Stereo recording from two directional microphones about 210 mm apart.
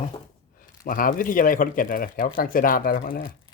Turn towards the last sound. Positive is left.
turn(degrees=40)  # may be behind; listen again after turning